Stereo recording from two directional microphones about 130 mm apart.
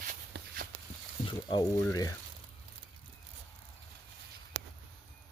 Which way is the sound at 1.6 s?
25° left (ahead or behind).